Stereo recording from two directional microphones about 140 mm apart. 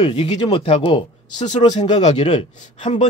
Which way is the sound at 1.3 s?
60° left (ahead or behind).